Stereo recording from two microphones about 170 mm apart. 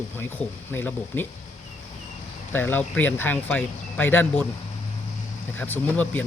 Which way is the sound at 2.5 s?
10° left (ahead or behind).